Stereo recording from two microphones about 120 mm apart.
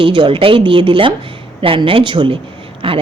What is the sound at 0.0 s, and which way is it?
A woman's voice, 45° right (ahead or behind).